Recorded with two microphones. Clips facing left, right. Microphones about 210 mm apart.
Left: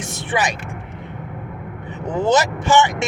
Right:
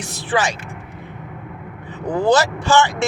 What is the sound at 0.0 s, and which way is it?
Speech, 20° left (ahead or behind).